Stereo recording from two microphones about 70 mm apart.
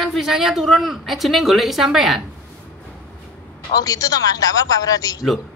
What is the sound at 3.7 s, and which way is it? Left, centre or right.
A man's voice, left.